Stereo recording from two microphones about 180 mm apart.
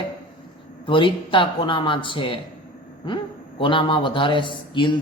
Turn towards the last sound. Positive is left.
turn(degrees=25)  # may be behind; listen again after turning